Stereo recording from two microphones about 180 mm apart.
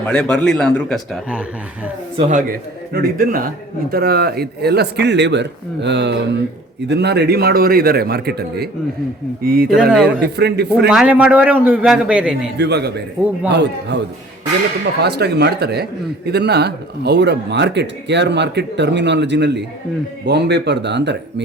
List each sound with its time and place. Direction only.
0.0 s a man's voice: 5° left (ahead or behind)
2.1 s speech: 35° right (ahead or behind)
2.5 s a man's voice: 55° right (ahead or behind)
9.9 s a man's voice: centre (ahead or behind)
10.3 s a man's voice: 65° right (ahead or behind)
10.8 s a man's voice: 5° right (ahead or behind)
12.5 s a man's voice: 65° right (ahead or behind)
15.0 s a man's voice: 65° right (ahead or behind)